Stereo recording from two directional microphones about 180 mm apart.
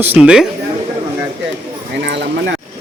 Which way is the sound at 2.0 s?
75° right (ahead or behind).